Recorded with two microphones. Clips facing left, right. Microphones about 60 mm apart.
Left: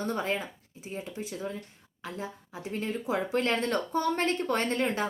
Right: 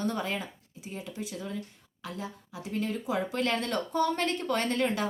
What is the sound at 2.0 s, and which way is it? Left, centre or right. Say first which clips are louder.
A woman's voice: left 1 dB; left.